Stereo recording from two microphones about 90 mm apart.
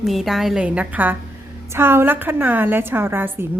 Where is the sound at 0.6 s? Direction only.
15° right (ahead or behind).